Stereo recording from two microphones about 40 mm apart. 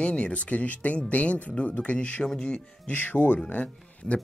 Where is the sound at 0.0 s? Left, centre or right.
Left.